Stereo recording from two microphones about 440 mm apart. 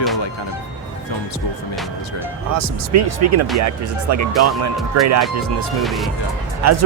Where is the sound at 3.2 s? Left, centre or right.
Right.